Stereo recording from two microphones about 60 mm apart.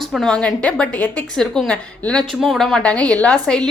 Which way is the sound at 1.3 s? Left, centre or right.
Centre.